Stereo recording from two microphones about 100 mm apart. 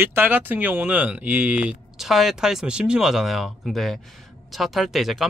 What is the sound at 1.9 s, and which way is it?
Speech, centre (ahead or behind).